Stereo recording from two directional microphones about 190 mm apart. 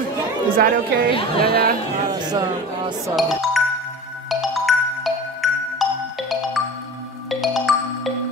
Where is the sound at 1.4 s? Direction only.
50° right (ahead or behind).